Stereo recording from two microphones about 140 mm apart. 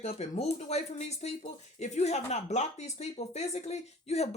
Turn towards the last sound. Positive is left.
turn(degrees=50)  # may be behind; listen again after turning